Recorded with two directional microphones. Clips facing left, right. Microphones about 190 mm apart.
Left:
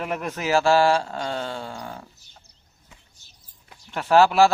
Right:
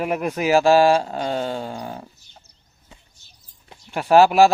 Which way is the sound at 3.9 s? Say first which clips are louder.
Right 3 dB; 15° right (ahead or behind).